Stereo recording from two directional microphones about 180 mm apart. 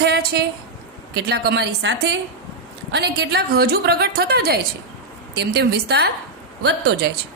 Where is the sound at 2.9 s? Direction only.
70° right (ahead or behind).